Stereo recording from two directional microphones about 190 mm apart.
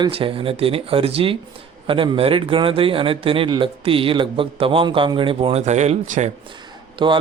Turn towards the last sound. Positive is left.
turn(degrees=-25)  # may be behind; listen again after turning